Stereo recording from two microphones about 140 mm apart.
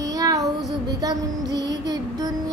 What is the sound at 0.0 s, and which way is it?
Child singing, 25° right (ahead or behind).